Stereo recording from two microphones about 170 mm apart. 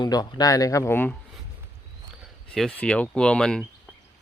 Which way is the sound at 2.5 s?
5° left (ahead or behind).